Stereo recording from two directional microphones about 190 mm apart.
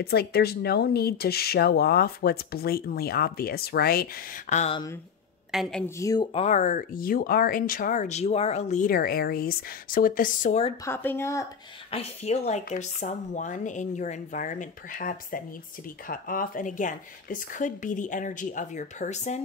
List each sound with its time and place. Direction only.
0.0 s speech: 55° left (ahead or behind); by 4.7 s 40° left (ahead or behind)
5.5 s a woman's voice: centre (ahead or behind)
5.9 s speech: 15° left (ahead or behind)
6.3 s speech: 35° left (ahead or behind)
10.9 s speech: 10° left (ahead or behind)
11.9 s speech: 35° left (ahead or behind)